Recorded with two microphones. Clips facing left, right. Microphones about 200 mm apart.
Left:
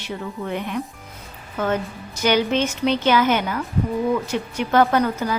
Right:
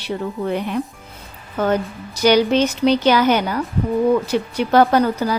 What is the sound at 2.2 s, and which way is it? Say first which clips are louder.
Speech: right 5 dB; 35° right (ahead or behind).